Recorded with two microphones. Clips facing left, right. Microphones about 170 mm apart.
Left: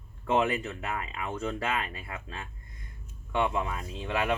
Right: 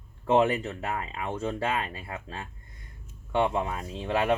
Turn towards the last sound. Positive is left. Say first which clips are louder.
# right 3 dB
turn(degrees=-30)  # may be behind; listen again after turning